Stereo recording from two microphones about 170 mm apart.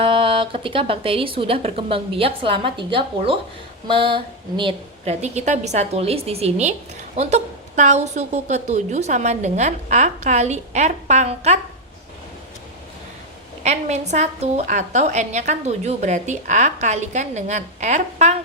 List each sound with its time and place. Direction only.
0.0 s speech: 30° right (ahead or behind)
5.2 s a woman's voice: 40° right (ahead or behind)
13.6 s a woman's voice: 40° right (ahead or behind)